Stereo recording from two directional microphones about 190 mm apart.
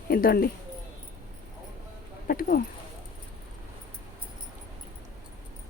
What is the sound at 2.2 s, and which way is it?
Speech, 50° left (ahead or behind).